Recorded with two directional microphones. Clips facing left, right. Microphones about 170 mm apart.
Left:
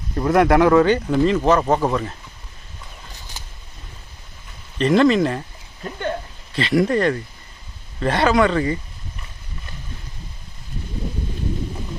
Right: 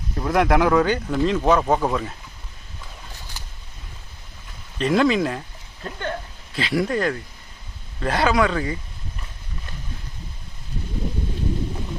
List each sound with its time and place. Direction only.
0.2 s speech: centre (ahead or behind)
4.8 s speech: centre (ahead or behind)
5.8 s a sound: 15° left (ahead or behind)
6.5 s speech: centre (ahead or behind)